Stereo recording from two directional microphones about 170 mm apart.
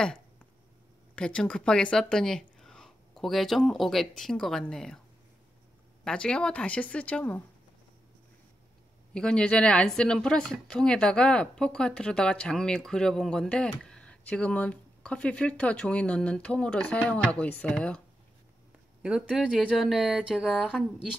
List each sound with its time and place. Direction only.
1.1 s speech: 5° left (ahead or behind)
6.0 s speech: 5° left (ahead or behind)
9.1 s speech: 5° left (ahead or behind)
19.0 s speech: 5° right (ahead or behind)